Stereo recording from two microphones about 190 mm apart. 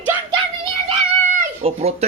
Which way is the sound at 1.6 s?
35° right (ahead or behind).